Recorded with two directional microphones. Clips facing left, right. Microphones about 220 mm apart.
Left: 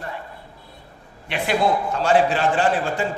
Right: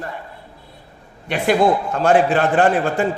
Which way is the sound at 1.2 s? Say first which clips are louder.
Right 5 dB; 45° right (ahead or behind).